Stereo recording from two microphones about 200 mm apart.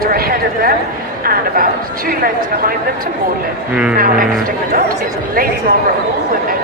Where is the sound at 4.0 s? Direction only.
45° right (ahead or behind).